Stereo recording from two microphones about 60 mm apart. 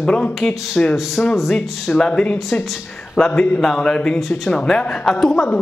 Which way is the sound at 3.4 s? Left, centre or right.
Centre.